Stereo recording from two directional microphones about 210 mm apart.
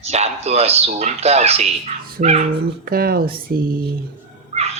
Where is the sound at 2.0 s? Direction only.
45° right (ahead or behind).